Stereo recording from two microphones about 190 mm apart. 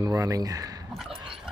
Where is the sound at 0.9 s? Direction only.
Centre (ahead or behind).